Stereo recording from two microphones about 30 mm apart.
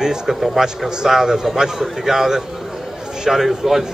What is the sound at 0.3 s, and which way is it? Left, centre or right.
Speech, centre.